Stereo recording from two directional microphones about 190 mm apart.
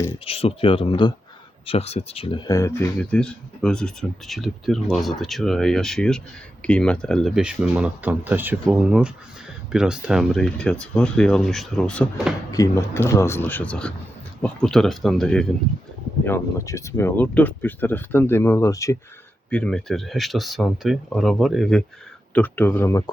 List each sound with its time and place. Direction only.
0.3 s speech: 30° left (ahead or behind)
2.5 s speech: 15° left (ahead or behind)
12.5 s speech: 15° left (ahead or behind)
19.5 s speech: 5° left (ahead or behind)